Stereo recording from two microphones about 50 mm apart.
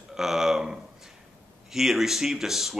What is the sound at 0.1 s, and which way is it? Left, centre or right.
Speech, centre.